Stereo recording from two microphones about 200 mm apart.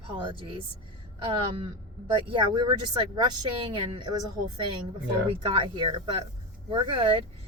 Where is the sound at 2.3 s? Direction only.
20° right (ahead or behind).